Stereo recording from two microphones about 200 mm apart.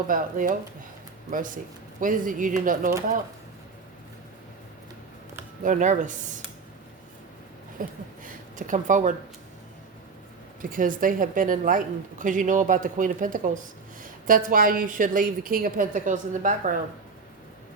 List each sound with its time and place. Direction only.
0.1 s a woman's voice: 40° right (ahead or behind)
5.6 s speech: 40° right (ahead or behind)
7.8 s speech: 40° right (ahead or behind)
10.6 s a woman's voice: 45° right (ahead or behind)